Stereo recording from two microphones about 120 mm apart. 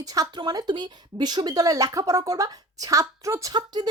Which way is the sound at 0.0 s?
30° right (ahead or behind).